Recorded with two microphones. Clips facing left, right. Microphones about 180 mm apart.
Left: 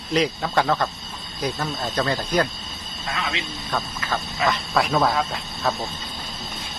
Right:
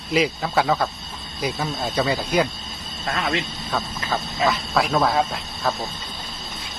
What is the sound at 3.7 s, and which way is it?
Speech, centre (ahead or behind).